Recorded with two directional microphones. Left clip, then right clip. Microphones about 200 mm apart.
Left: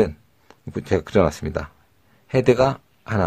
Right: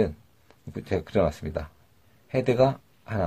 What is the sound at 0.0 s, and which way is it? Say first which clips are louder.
Speech: left 6 dB; 40° left (ahead or behind).